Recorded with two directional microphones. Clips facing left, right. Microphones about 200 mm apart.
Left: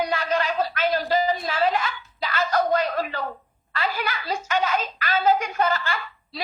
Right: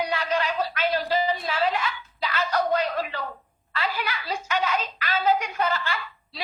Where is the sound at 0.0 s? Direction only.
45° left (ahead or behind).